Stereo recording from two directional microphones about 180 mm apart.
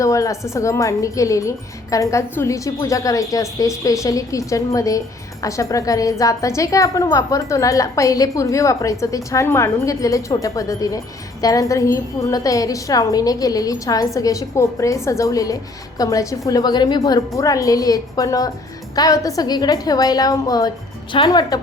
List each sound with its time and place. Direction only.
0.0 s a woman's voice: 15° left (ahead or behind)